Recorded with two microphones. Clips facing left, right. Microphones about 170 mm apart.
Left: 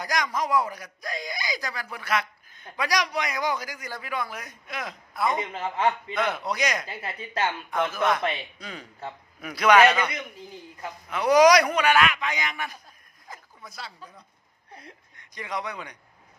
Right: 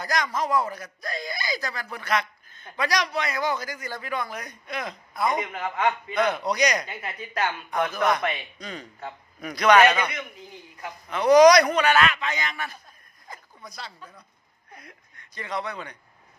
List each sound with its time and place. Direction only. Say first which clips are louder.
0.0 s speech: right 1 dB; 10° left (ahead or behind)
5.4 s a man's voice: even; 25° left (ahead or behind)
6.1 s a man's voice: right 4 dB; centre (ahead or behind)
6.8 s speech: even; 30° left (ahead or behind)
7.7 s a man's voice: right 1 dB; 5° left (ahead or behind)
9.8 s a man's voice: even; 10° right (ahead or behind)
11.1 s speech: right 3 dB; 10° left (ahead or behind)
13.2 s a sound: right 1 dB; 5° left (ahead or behind)
14.7 s a sound: left 1 dB; 30° left (ahead or behind)
15.2 s a man's voice: right 1 dB; 10° left (ahead or behind)